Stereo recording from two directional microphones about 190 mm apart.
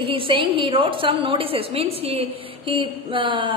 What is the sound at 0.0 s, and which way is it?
A woman's voice, 25° right (ahead or behind).